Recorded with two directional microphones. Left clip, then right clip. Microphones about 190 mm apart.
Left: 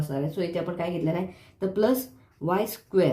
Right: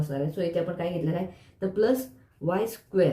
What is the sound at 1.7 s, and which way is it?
Speech, 45° left (ahead or behind).